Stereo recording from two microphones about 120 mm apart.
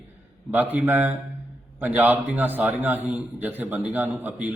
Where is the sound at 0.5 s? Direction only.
15° right (ahead or behind).